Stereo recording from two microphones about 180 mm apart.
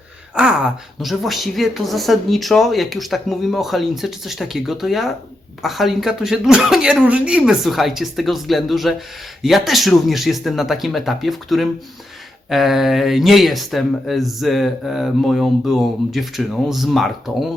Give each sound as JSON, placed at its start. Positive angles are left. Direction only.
{"t": 0.3, "sound": "speech", "side_deg": -5}